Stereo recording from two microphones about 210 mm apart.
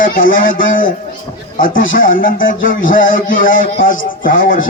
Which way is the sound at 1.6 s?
40° left (ahead or behind).